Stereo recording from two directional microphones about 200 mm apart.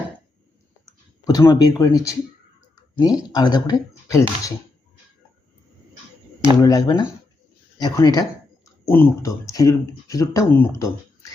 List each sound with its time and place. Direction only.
1.2 s speech: 15° left (ahead or behind)
3.3 s speech: 20° left (ahead or behind)
6.6 s speech: 20° left (ahead or behind)